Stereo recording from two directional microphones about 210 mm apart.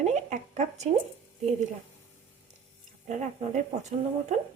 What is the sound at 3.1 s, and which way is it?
A woman's voice, 35° right (ahead or behind).